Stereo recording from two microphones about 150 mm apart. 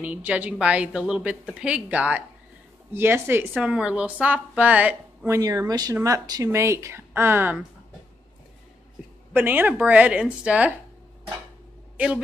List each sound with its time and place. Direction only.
0.0 s a woman's voice: 10° right (ahead or behind)
9.3 s speech: 10° right (ahead or behind)